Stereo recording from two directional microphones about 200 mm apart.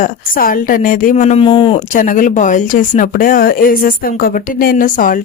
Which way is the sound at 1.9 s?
40° left (ahead or behind).